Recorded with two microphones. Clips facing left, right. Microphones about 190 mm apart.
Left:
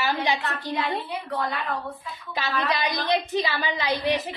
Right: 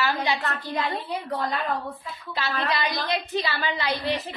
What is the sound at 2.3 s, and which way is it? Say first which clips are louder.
A woman's voice: left 1 dB; 15° left (ahead or behind).